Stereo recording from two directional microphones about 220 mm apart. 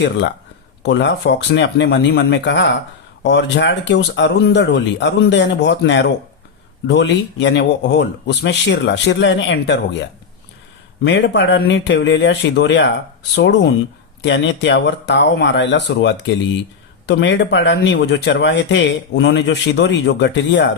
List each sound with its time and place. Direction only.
0.8 s speech: 50° left (ahead or behind)
11.0 s speech: 55° left (ahead or behind)